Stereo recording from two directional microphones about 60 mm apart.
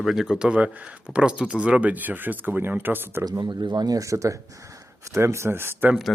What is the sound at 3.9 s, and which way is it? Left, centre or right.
Speech, right.